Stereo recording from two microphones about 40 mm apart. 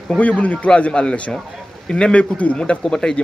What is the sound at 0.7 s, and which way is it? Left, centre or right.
A man's voice, left.